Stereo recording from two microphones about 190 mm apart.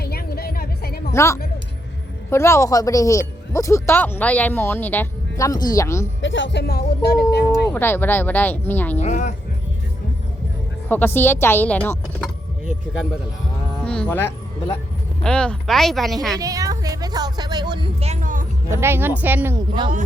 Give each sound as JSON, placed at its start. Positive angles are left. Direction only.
{"t": 0.0, "sound": "music", "side_deg": 55}
{"t": 1.1, "sound": "speech", "side_deg": 15}
{"t": 6.2, "sound": "speech", "side_deg": 75}
{"t": 7.7, "sound": "speech", "side_deg": 10}
{"t": 9.0, "sound": "speech", "side_deg": 40}
{"t": 10.8, "sound": "speech", "side_deg": 10}
{"t": 13.8, "sound": "speech", "side_deg": 5}
{"t": 16.4, "sound": "a woman's voice", "side_deg": -20}
{"t": 18.7, "sound": "speech", "side_deg": -15}